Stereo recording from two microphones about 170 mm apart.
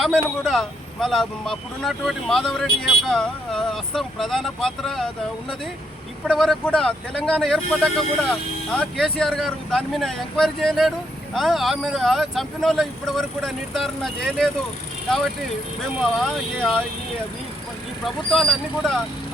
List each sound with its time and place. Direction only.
0.0 s speech: centre (ahead or behind)
6.2 s speech: centre (ahead or behind)
16.1 s speech: 5° left (ahead or behind)
18.0 s speech: centre (ahead or behind)